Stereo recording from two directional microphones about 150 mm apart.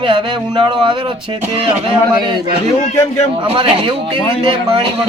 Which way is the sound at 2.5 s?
50° left (ahead or behind).